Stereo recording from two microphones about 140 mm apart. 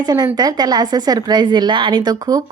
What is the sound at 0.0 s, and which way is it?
A woman's voice, 30° right (ahead or behind).